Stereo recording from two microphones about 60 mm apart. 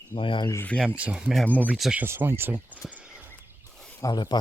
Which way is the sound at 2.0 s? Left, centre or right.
Right.